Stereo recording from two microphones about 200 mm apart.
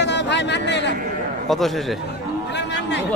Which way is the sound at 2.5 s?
60° left (ahead or behind).